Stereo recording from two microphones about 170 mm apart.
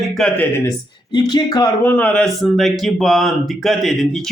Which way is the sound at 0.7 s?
25° left (ahead or behind).